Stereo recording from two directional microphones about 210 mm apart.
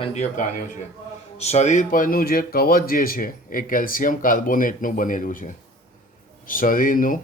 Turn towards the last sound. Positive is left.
turn(degrees=40)  # may be behind; listen again after turning